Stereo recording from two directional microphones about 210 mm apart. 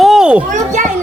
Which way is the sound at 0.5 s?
35° right (ahead or behind).